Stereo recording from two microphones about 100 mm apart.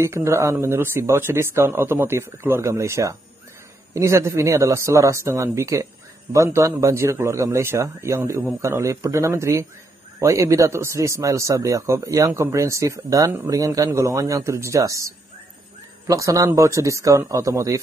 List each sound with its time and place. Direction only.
0.0 s speech: 30° right (ahead or behind)